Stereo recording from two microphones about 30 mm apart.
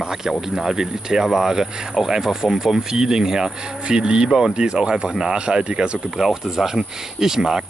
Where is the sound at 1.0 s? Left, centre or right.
Centre.